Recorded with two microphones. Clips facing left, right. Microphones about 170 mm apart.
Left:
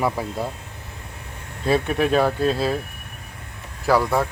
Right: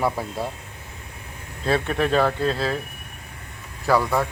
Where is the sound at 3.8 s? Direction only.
10° left (ahead or behind).